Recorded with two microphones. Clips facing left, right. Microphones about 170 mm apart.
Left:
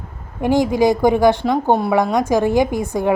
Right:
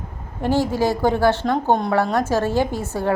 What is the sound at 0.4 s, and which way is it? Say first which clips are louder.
Speech: left 4 dB; 15° left (ahead or behind).